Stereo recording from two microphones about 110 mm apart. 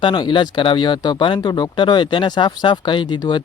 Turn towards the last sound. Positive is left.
turn(degrees=45)  # may be behind; listen again after turning